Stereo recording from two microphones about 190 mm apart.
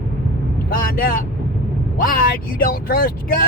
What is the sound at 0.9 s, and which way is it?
Speech, 50° left (ahead or behind).